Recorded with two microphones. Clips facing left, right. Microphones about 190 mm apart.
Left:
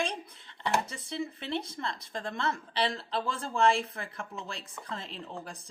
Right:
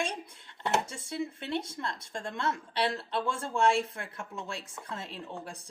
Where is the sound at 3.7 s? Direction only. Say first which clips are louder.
Right 2 dB; centre (ahead or behind).